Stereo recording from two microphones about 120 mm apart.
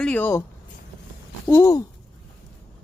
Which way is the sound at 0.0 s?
15° left (ahead or behind).